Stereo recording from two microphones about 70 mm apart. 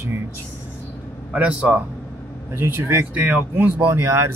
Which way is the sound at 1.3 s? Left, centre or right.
Right.